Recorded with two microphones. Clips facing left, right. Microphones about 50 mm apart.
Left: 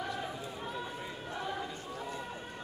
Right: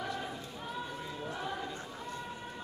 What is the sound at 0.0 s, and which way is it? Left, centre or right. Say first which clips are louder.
Run: even; centre.